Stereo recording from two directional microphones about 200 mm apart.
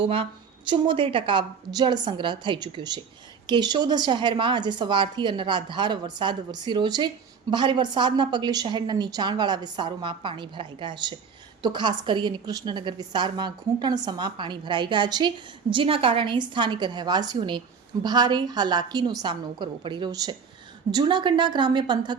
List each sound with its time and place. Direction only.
0.0 s a woman's voice: 25° right (ahead or behind)